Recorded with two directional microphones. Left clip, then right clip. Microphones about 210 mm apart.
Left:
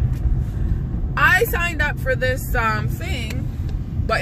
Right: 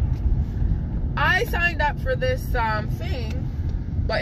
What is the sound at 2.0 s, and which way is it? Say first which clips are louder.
Speech: left 3 dB; 20° left (ahead or behind).